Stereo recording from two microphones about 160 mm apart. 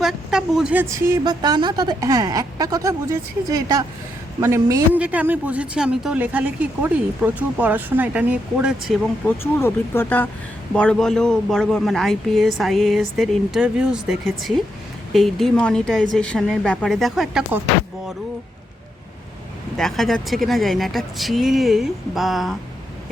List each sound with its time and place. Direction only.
0.0 s a woman's voice: 5° right (ahead or behind)
9.2 s speech: 15° left (ahead or behind)
19.7 s speech: centre (ahead or behind)